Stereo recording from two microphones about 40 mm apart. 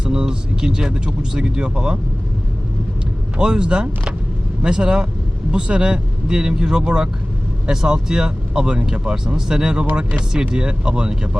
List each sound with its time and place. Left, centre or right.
0.0 s speech: right
3.3 s speech: right